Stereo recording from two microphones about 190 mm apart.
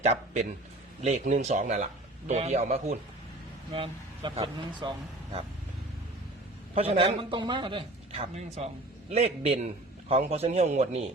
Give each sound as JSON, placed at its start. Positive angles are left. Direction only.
{"t": 0.0, "sound": "a man's voice", "side_deg": -35}
{"t": 6.7, "sound": "a man's voice", "side_deg": -30}